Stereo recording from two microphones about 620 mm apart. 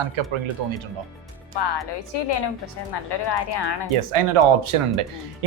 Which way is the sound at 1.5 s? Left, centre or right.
Left.